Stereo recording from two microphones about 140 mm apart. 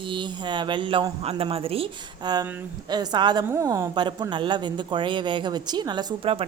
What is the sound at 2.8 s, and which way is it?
Speech, 30° right (ahead or behind).